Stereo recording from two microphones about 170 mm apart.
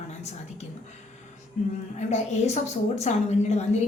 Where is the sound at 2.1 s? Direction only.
40° left (ahead or behind).